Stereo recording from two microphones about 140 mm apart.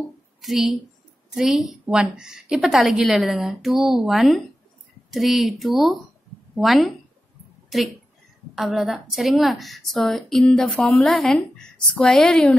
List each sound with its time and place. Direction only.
0.4 s a woman's voice: centre (ahead or behind)
8.5 s a woman's voice: centre (ahead or behind)